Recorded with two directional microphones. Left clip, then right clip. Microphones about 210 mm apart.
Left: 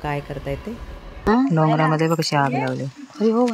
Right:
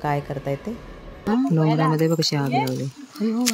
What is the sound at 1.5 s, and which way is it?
Speech, 20° right (ahead or behind).